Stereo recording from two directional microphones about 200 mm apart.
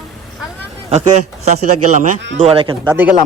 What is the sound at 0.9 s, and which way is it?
A man's voice, 35° right (ahead or behind).